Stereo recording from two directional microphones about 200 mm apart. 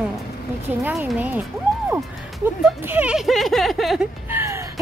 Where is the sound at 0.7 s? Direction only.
10° right (ahead or behind).